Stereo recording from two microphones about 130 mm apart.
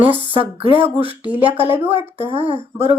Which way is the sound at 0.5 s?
50° right (ahead or behind).